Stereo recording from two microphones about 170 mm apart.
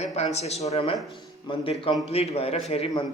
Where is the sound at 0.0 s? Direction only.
40° left (ahead or behind).